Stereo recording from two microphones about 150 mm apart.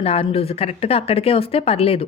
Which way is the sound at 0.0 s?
40° left (ahead or behind).